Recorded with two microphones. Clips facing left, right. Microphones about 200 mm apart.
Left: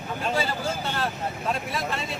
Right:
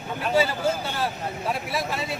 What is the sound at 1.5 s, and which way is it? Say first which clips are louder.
Speech: right 1 dB; 5° right (ahead or behind).